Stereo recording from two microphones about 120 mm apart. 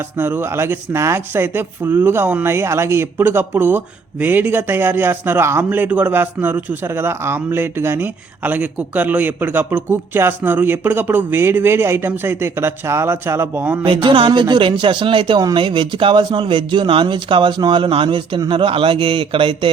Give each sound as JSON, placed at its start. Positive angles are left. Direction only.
{"t": 0.2, "sound": "speech", "side_deg": -20}
{"t": 13.8, "sound": "speech", "side_deg": -45}